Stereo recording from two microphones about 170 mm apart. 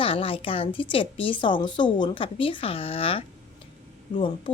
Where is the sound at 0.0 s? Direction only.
30° left (ahead or behind).